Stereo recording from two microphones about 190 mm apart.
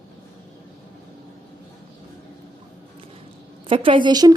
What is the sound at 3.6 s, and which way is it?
Speech, 25° right (ahead or behind).